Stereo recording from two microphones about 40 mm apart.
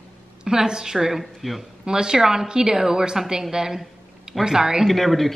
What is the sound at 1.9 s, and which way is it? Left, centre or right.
A woman's voice, centre.